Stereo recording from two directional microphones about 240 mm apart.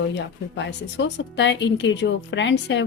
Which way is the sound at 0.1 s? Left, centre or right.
Left.